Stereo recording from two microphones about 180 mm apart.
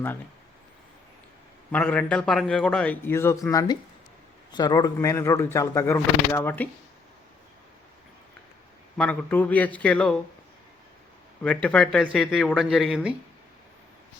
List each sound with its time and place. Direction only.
1.7 s speech: 5° left (ahead or behind)
9.0 s speech: 10° left (ahead or behind)
11.4 s speech: 5° left (ahead or behind)